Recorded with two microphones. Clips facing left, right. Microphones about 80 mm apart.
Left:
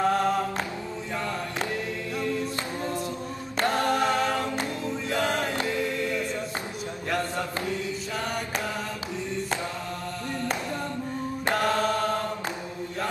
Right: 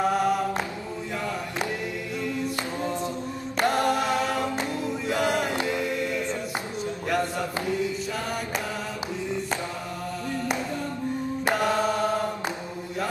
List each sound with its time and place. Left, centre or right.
0.0 s music: centre
3.5 s a capella: centre
4.6 s music: centre
11.4 s mantra: centre